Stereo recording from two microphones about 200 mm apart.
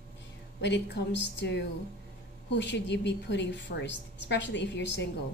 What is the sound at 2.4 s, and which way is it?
A woman's voice, 60° left (ahead or behind).